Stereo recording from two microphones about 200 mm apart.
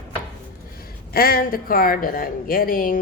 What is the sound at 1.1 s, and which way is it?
A woman's voice, 45° left (ahead or behind).